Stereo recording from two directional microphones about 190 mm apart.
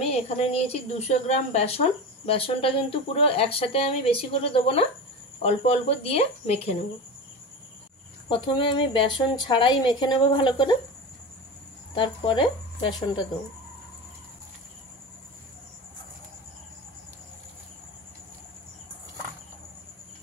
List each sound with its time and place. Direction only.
0.1 s a woman's voice: 35° left (ahead or behind)
8.3 s a woman's voice: 25° left (ahead or behind)
11.9 s a woman's voice: 25° left (ahead or behind)